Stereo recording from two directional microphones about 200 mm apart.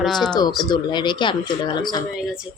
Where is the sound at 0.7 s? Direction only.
20° left (ahead or behind).